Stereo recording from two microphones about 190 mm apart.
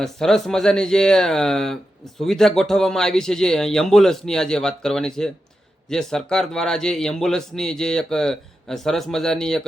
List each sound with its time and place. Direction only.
0.0 s speech: centre (ahead or behind)